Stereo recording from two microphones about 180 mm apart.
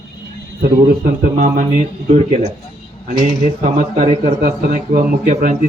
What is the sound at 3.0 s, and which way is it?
A man's voice, 45° right (ahead or behind).